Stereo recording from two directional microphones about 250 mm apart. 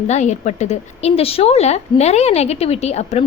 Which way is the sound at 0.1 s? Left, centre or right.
Left.